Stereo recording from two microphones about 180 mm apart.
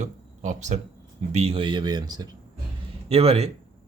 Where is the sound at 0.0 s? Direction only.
40° right (ahead or behind).